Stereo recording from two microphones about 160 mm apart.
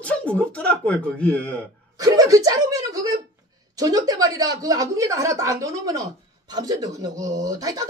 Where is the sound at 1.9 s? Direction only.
20° right (ahead or behind).